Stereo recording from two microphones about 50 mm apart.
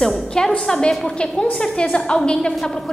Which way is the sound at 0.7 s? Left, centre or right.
Centre.